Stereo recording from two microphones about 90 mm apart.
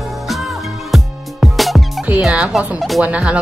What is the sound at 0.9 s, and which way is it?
Music, centre (ahead or behind).